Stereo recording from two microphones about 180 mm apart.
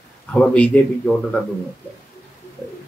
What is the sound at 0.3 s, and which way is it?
Speech, 5° left (ahead or behind).